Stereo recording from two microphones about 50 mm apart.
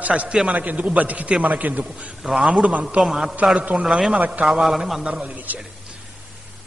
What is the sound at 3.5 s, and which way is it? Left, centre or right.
Speech, right.